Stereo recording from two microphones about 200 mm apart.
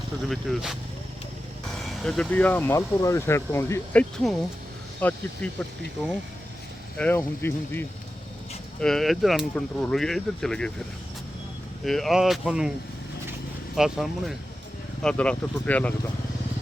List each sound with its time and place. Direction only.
0.3 s speech: centre (ahead or behind)
1.8 s speech: 5° left (ahead or behind)
6.9 s speech: 10° left (ahead or behind)
11.9 s speech: centre (ahead or behind)
13.7 s speech: centre (ahead or behind)